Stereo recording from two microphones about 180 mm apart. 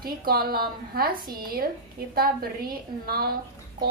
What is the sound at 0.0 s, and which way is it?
A woman's voice, 55° right (ahead or behind).